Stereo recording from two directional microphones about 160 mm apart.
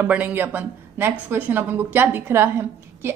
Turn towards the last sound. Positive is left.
turn(degrees=-15)  # may be behind; listen again after turning